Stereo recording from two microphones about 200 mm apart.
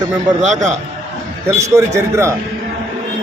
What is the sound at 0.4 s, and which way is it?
Speech, 35° right (ahead or behind).